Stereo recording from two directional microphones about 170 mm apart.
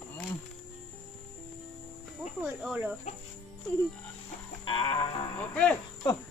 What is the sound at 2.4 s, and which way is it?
Cricket, 10° right (ahead or behind).